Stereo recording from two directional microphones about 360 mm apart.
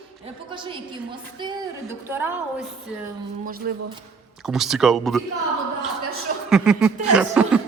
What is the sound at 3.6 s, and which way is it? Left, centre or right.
Speech, right.